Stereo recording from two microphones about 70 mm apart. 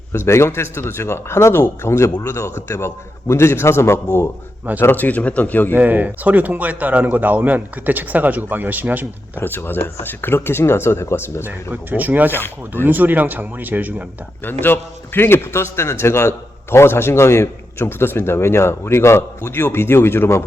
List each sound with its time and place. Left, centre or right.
0.3 s a man's voice: left
5.7 s speech: right
9.3 s a man's voice: left
11.4 s speech: right
14.4 s a man's voice: left